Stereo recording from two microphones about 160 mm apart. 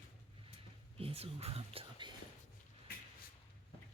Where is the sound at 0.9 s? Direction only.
40° right (ahead or behind).